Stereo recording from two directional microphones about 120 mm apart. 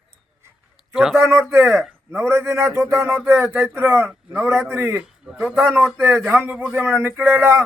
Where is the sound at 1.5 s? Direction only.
20° right (ahead or behind).